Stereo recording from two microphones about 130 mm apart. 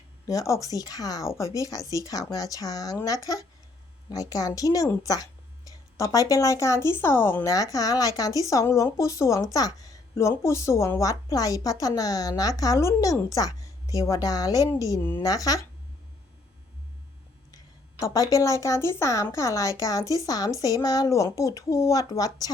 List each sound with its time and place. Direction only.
0.3 s speech: 25° left (ahead or behind)
18.0 s speech: 25° left (ahead or behind)